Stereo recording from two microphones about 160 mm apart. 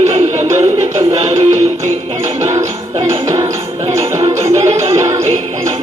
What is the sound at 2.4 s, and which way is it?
Music, 25° right (ahead or behind).